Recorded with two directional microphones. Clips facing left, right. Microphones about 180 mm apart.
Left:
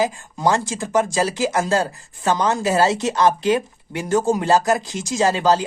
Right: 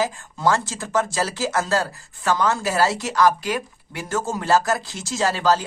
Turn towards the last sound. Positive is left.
turn(degrees=20)  # may be behind; listen again after turning